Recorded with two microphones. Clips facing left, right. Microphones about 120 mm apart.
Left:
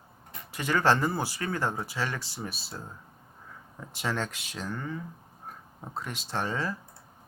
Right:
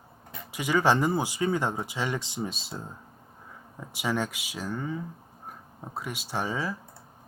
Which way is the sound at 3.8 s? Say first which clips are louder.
Right 3 dB; 10° right (ahead or behind).